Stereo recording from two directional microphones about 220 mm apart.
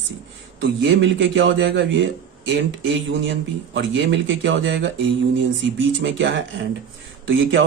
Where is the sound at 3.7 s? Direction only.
60° right (ahead or behind).